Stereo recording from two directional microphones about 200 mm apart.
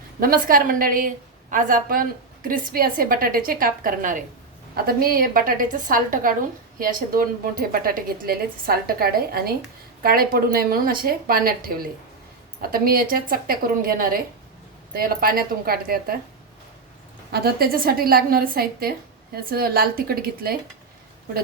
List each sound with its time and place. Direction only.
0.2 s a woman's voice: 45° right (ahead or behind)
17.3 s a woman's voice: 50° right (ahead or behind)